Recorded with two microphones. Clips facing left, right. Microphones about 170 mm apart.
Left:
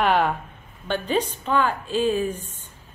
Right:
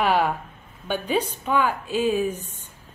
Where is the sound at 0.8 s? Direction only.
10° right (ahead or behind).